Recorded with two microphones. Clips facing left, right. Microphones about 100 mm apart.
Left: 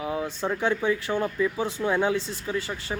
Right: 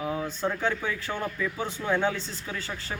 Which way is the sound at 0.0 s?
15° left (ahead or behind).